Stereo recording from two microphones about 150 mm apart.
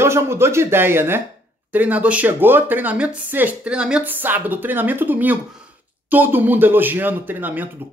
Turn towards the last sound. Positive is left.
turn(degrees=-10)  # may be behind; listen again after turning